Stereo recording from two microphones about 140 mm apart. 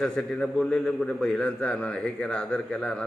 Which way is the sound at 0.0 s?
5° left (ahead or behind).